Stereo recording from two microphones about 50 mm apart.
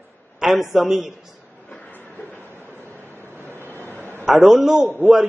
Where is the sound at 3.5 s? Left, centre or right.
Right.